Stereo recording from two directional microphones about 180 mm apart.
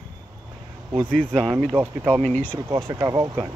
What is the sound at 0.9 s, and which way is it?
Speech, 5° left (ahead or behind).